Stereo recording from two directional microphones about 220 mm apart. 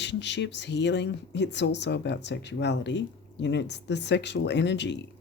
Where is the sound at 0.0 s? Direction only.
55° left (ahead or behind).